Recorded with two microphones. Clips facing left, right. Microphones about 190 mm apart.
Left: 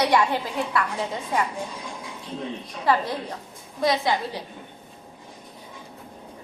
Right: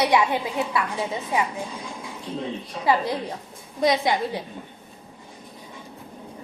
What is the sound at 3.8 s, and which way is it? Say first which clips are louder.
Speech: right 2 dB; 20° right (ahead or behind).